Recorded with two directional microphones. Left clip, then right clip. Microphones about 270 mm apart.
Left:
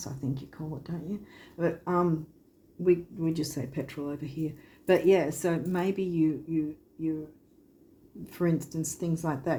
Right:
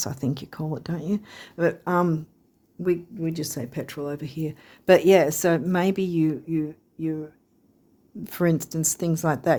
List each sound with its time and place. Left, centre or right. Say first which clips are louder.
0.0 s speech: right 8 dB; right
8.2 s speech: right 6 dB; right